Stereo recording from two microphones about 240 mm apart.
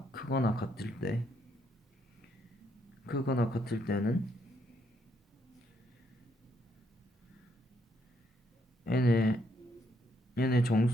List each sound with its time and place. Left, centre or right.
0.1 s a sound: left
0.8 s speech: left
3.1 s speech: left
8.8 s speech: left